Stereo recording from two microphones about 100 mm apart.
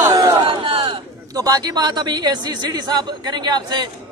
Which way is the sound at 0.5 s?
60° right (ahead or behind).